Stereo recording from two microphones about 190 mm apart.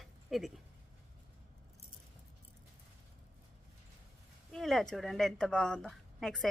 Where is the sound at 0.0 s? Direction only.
Centre (ahead or behind).